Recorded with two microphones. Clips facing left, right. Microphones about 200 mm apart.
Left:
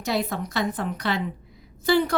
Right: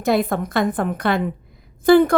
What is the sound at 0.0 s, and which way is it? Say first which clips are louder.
A woman's voice: right 7 dB; 55° right (ahead or behind).